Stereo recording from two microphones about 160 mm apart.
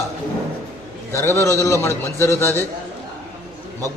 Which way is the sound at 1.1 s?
15° left (ahead or behind).